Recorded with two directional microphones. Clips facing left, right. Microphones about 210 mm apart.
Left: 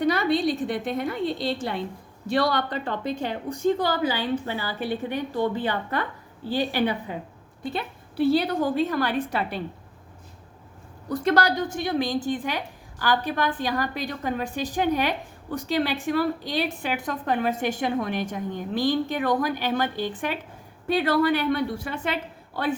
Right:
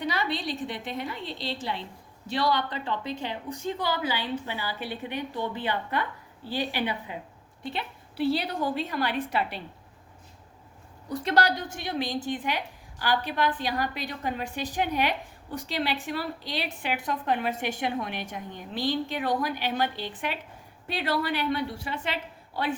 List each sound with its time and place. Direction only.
0.0 s a sound: 45° left (ahead or behind)
0.7 s a woman's voice: 50° left (ahead or behind)
11.1 s a woman's voice: 45° left (ahead or behind)